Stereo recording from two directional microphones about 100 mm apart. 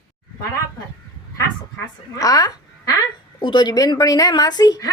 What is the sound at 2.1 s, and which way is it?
Speech, 35° left (ahead or behind).